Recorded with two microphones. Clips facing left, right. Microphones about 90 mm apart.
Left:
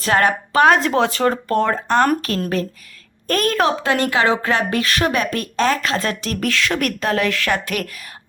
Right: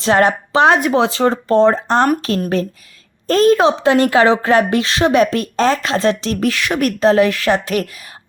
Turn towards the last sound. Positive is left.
turn(degrees=-25)  # may be behind; listen again after turning